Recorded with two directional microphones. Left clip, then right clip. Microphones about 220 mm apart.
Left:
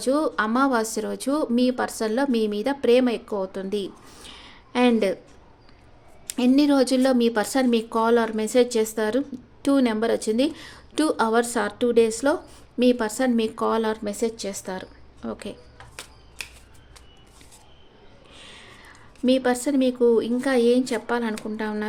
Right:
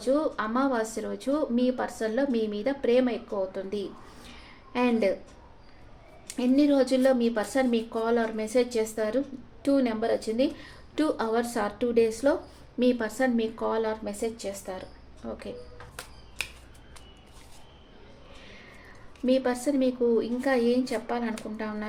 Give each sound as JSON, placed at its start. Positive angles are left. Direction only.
{"t": 0.0, "sound": "speech", "side_deg": 45}
{"t": 6.2, "sound": "speech", "side_deg": 45}
{"t": 18.4, "sound": "a sound", "side_deg": 40}
{"t": 19.2, "sound": "speech", "side_deg": 45}